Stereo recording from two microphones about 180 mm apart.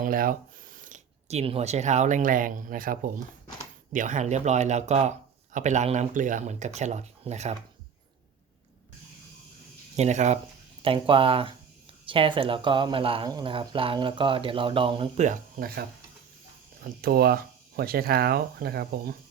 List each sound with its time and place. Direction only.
0.0 s speech: 50° right (ahead or behind)
9.9 s speech: 40° right (ahead or behind)
10.8 s speech: 30° right (ahead or behind)
15.1 s speech: 45° right (ahead or behind); by 19.1 s 60° right (ahead or behind)